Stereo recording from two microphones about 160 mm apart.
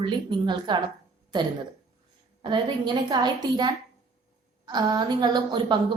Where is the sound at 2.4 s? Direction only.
30° right (ahead or behind).